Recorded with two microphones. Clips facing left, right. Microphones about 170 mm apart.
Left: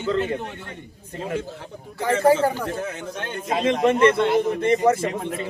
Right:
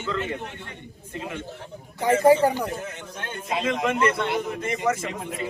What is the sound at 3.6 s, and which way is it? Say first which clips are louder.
A man's voice: left 6 dB; 30° left (ahead or behind).